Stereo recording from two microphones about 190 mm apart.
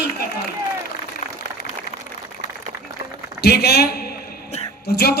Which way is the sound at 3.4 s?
60° left (ahead or behind).